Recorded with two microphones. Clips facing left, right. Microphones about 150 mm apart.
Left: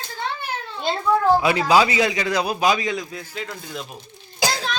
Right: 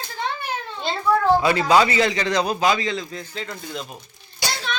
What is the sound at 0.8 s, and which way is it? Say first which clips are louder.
A man's voice: left 1 dB; 10° left (ahead or behind).